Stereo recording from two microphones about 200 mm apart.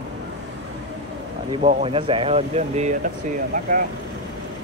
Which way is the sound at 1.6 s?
30° right (ahead or behind).